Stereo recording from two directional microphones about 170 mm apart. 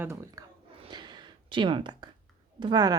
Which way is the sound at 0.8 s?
25° right (ahead or behind).